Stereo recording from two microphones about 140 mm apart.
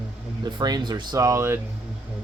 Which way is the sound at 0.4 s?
30° right (ahead or behind).